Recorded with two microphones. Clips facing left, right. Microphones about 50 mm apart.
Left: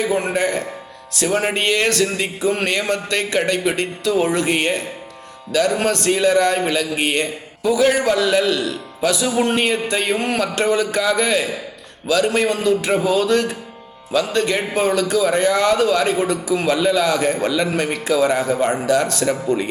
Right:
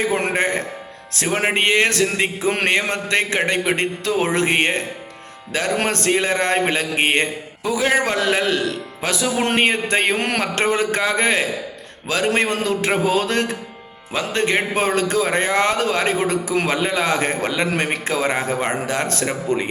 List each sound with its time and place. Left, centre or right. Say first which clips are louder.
0.0 s a man's voice: left 1 dB; right
2.5 s speech: even; right
2.7 s a man's voice: right 1 dB; right
10.4 s a man's voice: left 1 dB; right